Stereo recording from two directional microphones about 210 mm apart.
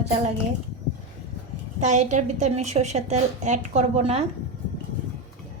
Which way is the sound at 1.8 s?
35° right (ahead or behind).